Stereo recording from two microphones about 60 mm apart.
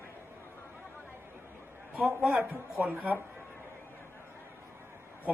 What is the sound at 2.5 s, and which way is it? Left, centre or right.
Speech, right.